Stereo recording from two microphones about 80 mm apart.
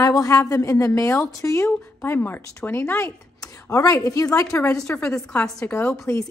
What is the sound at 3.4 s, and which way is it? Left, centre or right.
Speech, left.